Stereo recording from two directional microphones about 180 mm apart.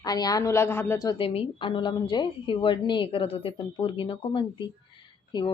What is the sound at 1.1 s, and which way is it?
A woman's voice, 30° left (ahead or behind).